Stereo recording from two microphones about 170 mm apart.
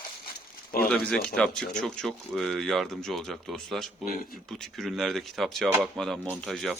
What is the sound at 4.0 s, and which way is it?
Speech, 55° left (ahead or behind).